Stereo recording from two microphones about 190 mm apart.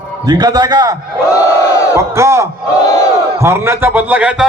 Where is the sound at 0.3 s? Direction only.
20° right (ahead or behind).